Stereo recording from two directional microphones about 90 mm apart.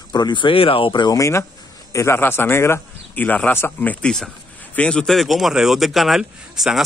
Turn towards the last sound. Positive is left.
turn(degrees=-5)  # may be behind; listen again after turning